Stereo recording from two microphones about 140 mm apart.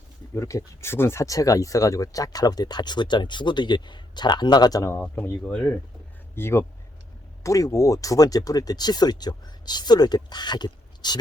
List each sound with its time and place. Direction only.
0.3 s speech: 20° left (ahead or behind)
4.9 s speech: 15° left (ahead or behind); by 11.2 s 30° left (ahead or behind)